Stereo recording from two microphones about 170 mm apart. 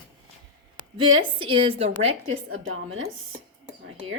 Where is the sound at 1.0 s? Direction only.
30° right (ahead or behind).